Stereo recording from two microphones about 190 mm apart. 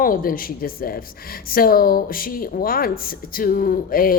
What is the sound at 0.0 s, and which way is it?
Speech, 50° left (ahead or behind).